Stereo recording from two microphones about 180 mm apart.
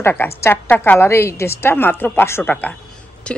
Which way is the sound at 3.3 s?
5° left (ahead or behind).